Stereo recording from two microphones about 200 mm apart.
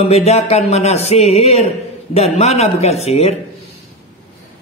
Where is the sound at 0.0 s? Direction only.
35° left (ahead or behind).